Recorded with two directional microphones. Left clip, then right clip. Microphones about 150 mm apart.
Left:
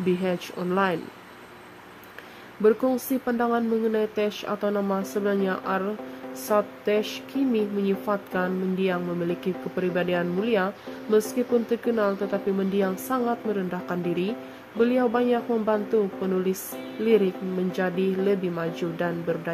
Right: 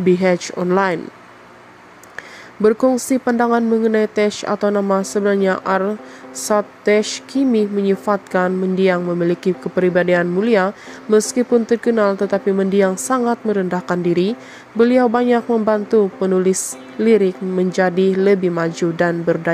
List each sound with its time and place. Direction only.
0.2 s speech: 40° right (ahead or behind)
2.6 s speech: 40° right (ahead or behind)